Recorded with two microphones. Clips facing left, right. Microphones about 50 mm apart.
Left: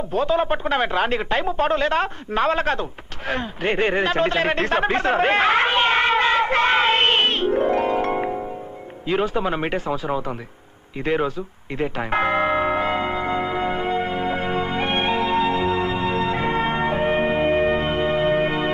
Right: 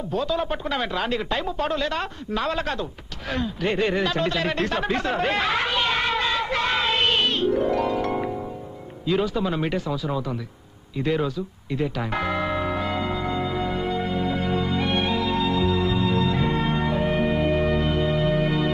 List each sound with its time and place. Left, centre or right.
0.1 s a man's voice: left
11.1 s bell: left